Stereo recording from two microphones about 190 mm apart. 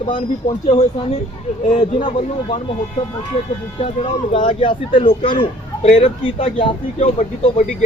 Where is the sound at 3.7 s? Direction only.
30° left (ahead or behind).